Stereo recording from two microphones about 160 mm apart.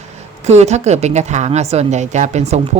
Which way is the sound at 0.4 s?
45° right (ahead or behind).